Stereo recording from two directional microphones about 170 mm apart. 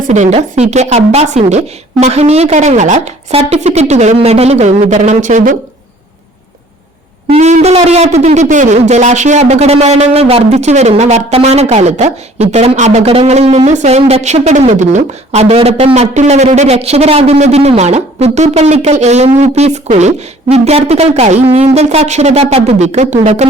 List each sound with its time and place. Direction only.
0.1 s speech: 40° right (ahead or behind)
7.3 s speech: 40° right (ahead or behind)